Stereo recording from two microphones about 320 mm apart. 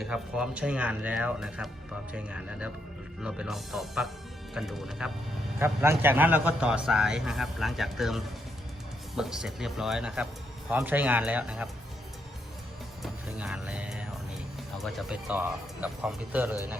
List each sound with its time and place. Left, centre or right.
0.0 s a man's voice: centre
13.0 s a man's voice: centre